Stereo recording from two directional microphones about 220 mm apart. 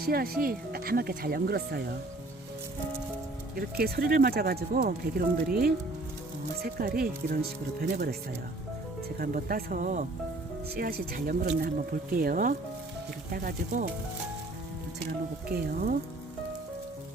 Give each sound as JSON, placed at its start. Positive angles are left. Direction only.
{"t": 0.0, "sound": "speech", "side_deg": -45}
{"t": 3.5, "sound": "speech", "side_deg": -45}
{"t": 9.1, "sound": "speech", "side_deg": -40}
{"t": 15.4, "sound": "speech", "side_deg": -40}